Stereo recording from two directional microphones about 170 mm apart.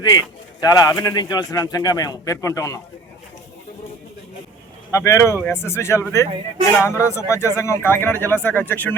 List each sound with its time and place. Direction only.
0.0 s speech: 25° left (ahead or behind)
4.9 s speech: 15° left (ahead or behind)